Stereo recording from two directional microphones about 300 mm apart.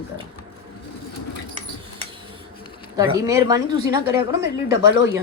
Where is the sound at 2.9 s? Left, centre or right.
Centre.